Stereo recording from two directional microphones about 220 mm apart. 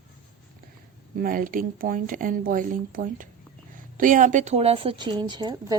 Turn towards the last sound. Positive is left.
turn(degrees=-20)  # may be behind; listen again after turning